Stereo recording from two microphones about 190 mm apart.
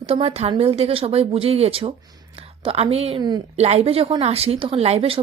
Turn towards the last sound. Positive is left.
turn(degrees=-30)  # may be behind; listen again after turning